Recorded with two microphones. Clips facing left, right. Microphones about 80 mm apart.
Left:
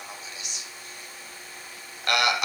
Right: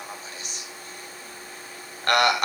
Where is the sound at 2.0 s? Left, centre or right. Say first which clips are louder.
Right 4 dB; right.